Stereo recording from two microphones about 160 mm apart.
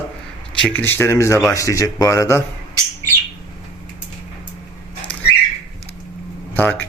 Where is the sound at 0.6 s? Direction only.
10° left (ahead or behind).